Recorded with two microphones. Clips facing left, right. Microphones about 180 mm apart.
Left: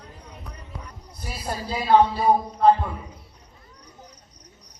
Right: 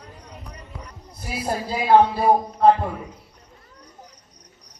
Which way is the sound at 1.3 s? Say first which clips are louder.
Right 4 dB; 65° right (ahead or behind).